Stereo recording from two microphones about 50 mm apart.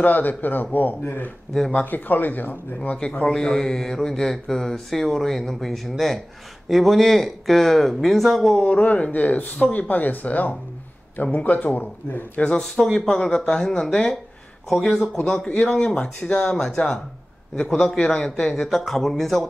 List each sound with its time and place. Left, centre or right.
0.0 s speech: left
1.9 s speech: left; by 8.5 s centre
8.5 s speech: left
12.9 s speech: centre
15.0 s a man's voice: left; by 19.4 s centre